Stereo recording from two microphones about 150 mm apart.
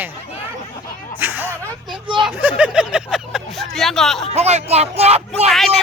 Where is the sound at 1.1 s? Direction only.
15° right (ahead or behind).